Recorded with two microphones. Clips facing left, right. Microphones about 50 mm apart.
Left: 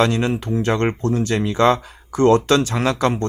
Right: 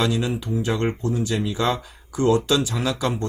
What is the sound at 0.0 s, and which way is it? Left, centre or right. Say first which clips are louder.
Speech: left 5 dB; left.